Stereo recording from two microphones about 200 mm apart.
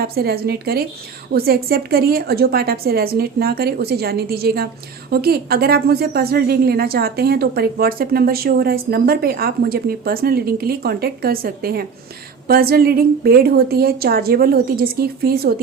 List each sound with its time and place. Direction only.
0.0 s a woman's voice: 50° right (ahead or behind)